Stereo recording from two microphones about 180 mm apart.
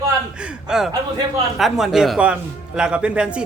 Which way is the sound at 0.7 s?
5° right (ahead or behind).